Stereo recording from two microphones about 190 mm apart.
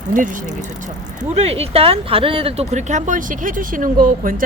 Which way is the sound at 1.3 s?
30° right (ahead or behind).